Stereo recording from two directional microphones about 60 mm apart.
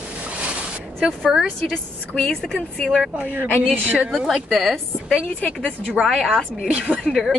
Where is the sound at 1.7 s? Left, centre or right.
Centre.